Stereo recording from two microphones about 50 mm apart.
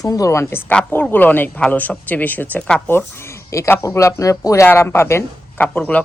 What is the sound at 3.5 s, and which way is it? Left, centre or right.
Speech, left.